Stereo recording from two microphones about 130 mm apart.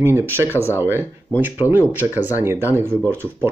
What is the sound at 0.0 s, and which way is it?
Speech, 20° right (ahead or behind).